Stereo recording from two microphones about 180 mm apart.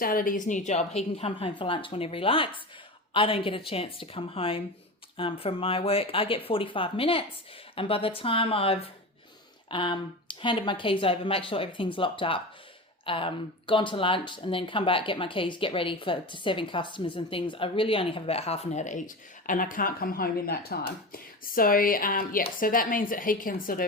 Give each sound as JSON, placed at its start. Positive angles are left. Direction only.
{"t": 0.0, "sound": "a woman's voice", "side_deg": 50}